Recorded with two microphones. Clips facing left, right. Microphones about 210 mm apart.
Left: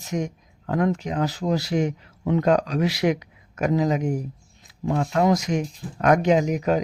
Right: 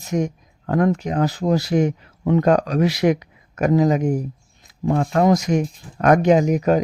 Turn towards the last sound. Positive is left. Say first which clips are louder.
# right 4 dB
turn(degrees=-45)  # may be behind; listen again after turning